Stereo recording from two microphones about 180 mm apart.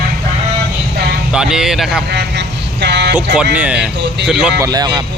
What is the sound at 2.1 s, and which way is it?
Vehicle, 70° right (ahead or behind).